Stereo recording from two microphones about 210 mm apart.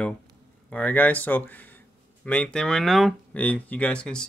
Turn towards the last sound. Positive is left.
turn(degrees=5)  # may be behind; listen again after turning